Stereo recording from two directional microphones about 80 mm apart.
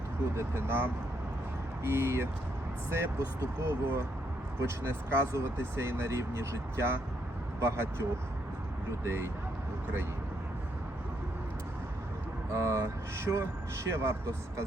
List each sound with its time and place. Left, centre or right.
0.3 s speech: right
9.0 s speech: right
12.5 s speech: right